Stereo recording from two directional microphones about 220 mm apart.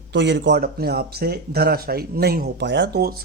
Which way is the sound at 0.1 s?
55° right (ahead or behind).